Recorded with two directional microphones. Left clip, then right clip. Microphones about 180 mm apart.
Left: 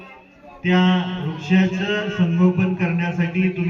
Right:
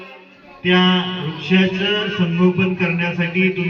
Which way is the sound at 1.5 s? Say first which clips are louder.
Right 4 dB; 50° left (ahead or behind).